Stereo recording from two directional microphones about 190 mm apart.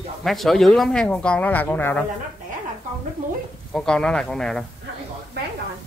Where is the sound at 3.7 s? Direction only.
5° left (ahead or behind).